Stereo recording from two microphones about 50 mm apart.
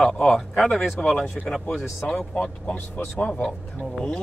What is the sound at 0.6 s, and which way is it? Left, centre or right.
Speech, centre.